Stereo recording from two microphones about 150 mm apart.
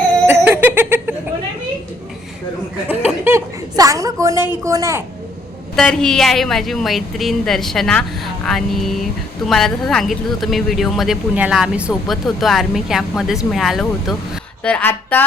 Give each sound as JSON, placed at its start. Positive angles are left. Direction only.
{"t": 0.3, "sound": "giggle", "side_deg": -10}
{"t": 2.9, "sound": "a sound", "side_deg": -15}
{"t": 4.5, "sound": "a woman's voice", "side_deg": -20}
{"t": 5.7, "sound": "speech", "side_deg": 5}